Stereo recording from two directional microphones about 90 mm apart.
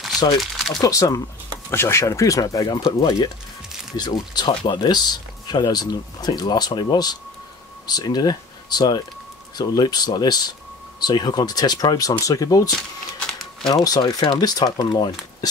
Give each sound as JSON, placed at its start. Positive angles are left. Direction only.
{"t": 0.4, "sound": "speech", "side_deg": 0}
{"t": 0.7, "sound": "speech", "side_deg": 40}
{"t": 13.3, "sound": "crumpling", "side_deg": 5}
{"t": 13.7, "sound": "speech", "side_deg": 45}